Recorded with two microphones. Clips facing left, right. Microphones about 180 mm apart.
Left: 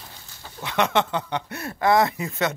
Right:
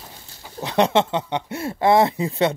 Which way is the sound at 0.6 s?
35° right (ahead or behind).